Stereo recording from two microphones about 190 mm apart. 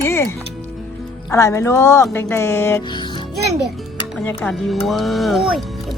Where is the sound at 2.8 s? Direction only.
25° left (ahead or behind).